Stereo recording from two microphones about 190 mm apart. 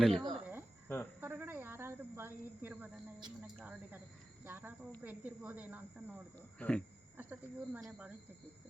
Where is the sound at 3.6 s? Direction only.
10° right (ahead or behind).